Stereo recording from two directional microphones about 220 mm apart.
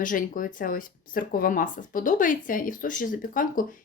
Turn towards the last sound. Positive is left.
turn(degrees=40)  # may be behind; listen again after turning